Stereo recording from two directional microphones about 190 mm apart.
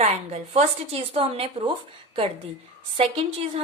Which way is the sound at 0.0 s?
35° right (ahead or behind).